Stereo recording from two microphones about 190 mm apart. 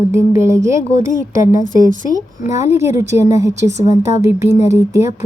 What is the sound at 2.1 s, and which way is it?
A woman's voice, 15° right (ahead or behind).